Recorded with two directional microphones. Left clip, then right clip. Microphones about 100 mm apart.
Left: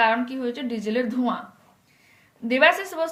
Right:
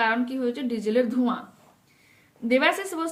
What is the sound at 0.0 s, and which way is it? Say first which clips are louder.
A woman's voice: left 3 dB; 40° right (ahead or behind).